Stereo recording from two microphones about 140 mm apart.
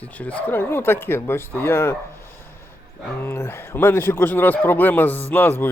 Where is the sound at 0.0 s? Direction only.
10° left (ahead or behind).